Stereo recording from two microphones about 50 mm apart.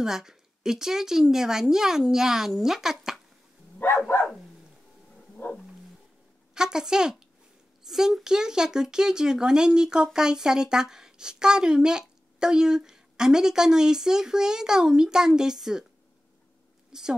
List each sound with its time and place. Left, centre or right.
0.0 s a woman's voice: centre
5.4 s dog: left
6.5 s a woman's voice: centre
16.9 s a woman's voice: centre